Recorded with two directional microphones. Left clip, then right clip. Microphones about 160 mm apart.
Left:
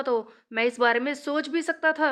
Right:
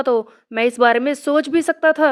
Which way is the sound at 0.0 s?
40° right (ahead or behind).